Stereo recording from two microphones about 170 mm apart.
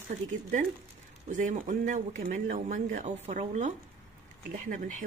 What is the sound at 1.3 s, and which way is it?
Speech, 50° right (ahead or behind).